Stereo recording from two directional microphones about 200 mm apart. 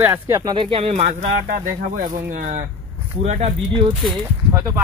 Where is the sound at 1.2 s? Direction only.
45° right (ahead or behind).